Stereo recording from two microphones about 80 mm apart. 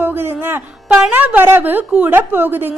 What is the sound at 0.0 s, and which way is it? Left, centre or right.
A woman's voice, right.